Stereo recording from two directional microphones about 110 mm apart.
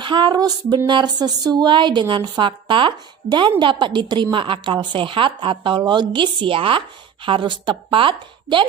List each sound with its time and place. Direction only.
0.0 s speech: 45° right (ahead or behind)